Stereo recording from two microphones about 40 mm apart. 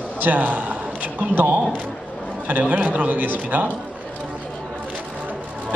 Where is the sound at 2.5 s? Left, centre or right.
Right.